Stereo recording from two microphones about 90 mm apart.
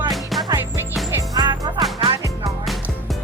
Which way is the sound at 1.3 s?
50° right (ahead or behind).